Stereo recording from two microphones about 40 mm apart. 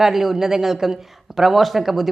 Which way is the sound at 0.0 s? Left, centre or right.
Centre.